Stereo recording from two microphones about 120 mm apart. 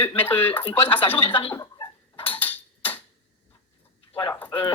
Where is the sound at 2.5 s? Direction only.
15° left (ahead or behind).